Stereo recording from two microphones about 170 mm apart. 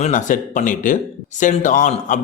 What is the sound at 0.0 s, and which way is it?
A man's voice, 50° left (ahead or behind).